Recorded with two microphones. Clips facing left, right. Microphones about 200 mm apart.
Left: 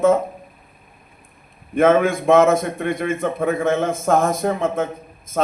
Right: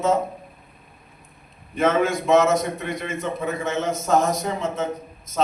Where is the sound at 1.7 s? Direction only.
55° left (ahead or behind).